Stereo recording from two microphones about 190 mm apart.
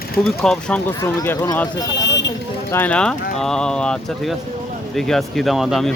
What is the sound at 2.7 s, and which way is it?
Speech, 10° left (ahead or behind).